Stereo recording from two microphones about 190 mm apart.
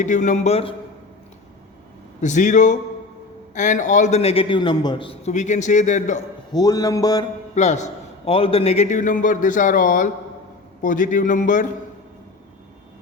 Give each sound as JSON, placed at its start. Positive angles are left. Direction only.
{"t": 0.0, "sound": "a man's voice", "side_deg": 40}
{"t": 2.2, "sound": "a man's voice", "side_deg": 40}
{"t": 6.5, "sound": "a man's voice", "side_deg": 20}
{"t": 7.5, "sound": "a man's voice", "side_deg": 40}